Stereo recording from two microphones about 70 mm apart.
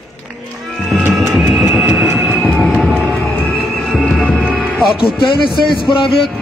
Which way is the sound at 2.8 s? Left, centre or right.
Centre.